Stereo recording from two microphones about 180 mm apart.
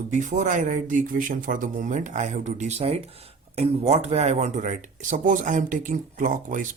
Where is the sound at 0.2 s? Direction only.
45° right (ahead or behind).